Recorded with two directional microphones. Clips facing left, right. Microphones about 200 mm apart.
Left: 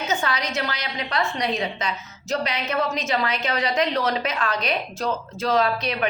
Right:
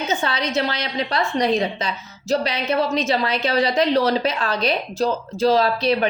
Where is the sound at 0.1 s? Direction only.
25° right (ahead or behind).